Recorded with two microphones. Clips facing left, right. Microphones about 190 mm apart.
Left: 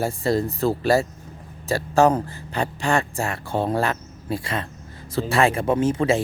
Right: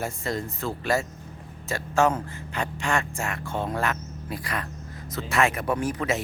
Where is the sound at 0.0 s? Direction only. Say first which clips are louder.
Left 8 dB; 35° left (ahead or behind).